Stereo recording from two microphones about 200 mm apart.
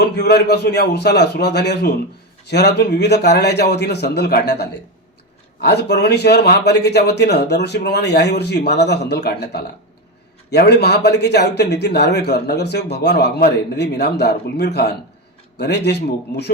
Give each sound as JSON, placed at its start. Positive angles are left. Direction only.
{"t": 0.0, "sound": "speech", "side_deg": 55}